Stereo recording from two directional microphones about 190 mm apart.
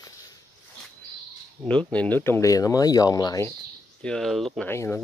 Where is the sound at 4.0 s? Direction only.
5° left (ahead or behind).